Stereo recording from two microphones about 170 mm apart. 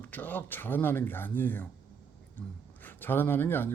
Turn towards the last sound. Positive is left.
turn(degrees=10)  # may be behind; listen again after turning